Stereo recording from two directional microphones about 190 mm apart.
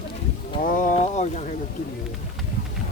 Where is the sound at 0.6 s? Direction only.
45° left (ahead or behind).